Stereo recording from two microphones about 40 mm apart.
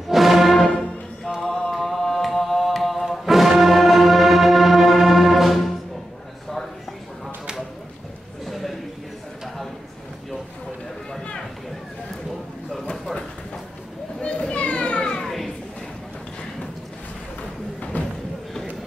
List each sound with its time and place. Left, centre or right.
0.1 s music: centre
1.4 s mantra: left
1.7 s music: centre
8.5 s a sound: centre
14.2 s children playing: left
15.2 s a sound: centre